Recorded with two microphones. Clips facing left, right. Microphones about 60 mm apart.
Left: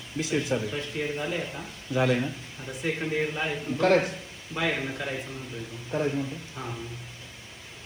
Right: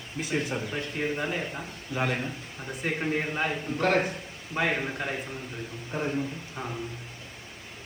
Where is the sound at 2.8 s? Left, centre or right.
Right.